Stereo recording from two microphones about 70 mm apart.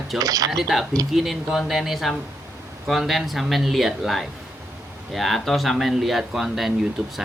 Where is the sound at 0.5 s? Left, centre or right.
Centre.